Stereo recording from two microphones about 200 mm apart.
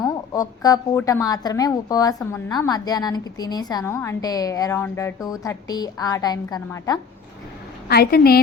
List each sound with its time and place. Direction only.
0.0 s a woman's voice: 15° left (ahead or behind)
7.9 s a woman's voice: 50° left (ahead or behind)